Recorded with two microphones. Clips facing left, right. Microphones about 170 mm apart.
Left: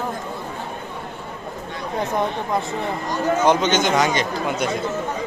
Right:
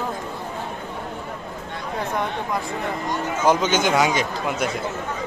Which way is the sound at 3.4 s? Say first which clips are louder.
Right 1 dB; 5° right (ahead or behind).